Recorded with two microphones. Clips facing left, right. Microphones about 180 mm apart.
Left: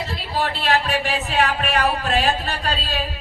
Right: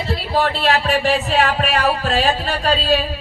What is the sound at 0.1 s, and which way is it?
Speech, 45° right (ahead or behind).